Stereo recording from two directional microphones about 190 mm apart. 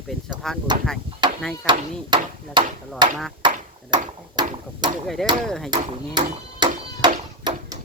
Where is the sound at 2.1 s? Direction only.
25° right (ahead or behind).